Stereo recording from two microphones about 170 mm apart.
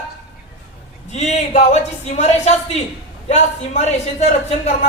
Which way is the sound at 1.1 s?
40° left (ahead or behind).